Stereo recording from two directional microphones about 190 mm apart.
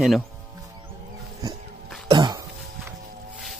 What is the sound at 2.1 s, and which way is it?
Cough, 25° right (ahead or behind).